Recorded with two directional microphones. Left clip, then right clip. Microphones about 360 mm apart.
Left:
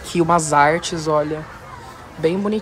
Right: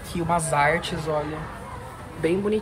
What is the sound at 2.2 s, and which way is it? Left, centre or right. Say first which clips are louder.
Speech: left 4 dB; centre.